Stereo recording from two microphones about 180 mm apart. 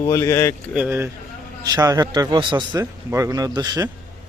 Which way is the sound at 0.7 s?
10° right (ahead or behind).